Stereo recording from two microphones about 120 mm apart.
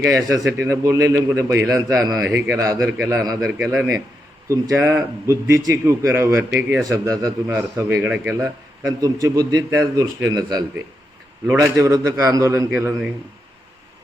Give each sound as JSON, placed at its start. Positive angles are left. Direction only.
{"t": 0.0, "sound": "a man's voice", "side_deg": -25}
{"t": 7.9, "sound": "a man's voice", "side_deg": -15}
{"t": 9.0, "sound": "a man's voice", "side_deg": -30}